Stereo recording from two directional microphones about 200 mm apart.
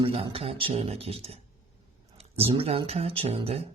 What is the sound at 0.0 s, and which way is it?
Speech, 25° right (ahead or behind).